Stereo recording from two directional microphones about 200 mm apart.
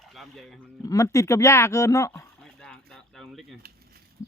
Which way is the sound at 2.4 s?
5° left (ahead or behind).